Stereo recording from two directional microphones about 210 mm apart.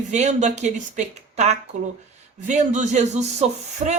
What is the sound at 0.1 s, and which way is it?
A woman's voice, 35° right (ahead or behind).